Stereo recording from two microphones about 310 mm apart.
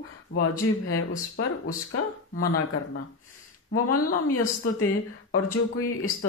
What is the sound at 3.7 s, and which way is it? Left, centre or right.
Speech, left.